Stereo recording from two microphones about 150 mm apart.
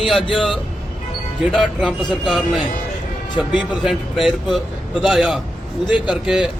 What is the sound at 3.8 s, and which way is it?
A man's voice, centre (ahead or behind).